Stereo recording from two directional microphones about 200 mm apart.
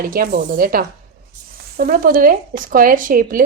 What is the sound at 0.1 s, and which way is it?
A woman's voice, 50° right (ahead or behind).